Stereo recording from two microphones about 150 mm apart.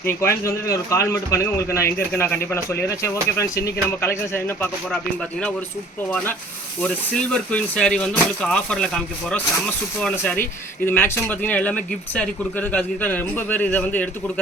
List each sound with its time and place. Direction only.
0.0 s speech: 15° left (ahead or behind)
6.8 s speech: 5° left (ahead or behind)